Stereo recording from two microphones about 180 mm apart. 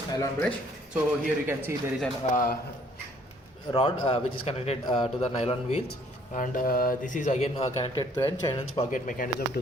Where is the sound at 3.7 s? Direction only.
30° left (ahead or behind).